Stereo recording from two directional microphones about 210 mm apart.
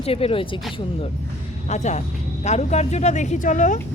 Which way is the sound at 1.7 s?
35° left (ahead or behind).